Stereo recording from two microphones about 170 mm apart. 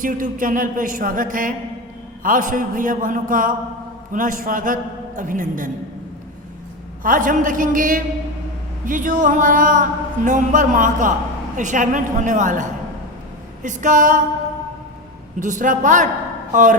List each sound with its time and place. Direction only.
0.0 s speech: 50° right (ahead or behind)
7.0 s speech: 50° right (ahead or behind)
15.4 s speech: 50° right (ahead or behind)